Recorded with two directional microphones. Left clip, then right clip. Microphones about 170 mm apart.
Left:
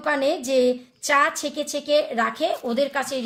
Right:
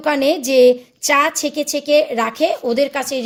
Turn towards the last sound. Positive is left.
turn(degrees=-40)  # may be behind; listen again after turning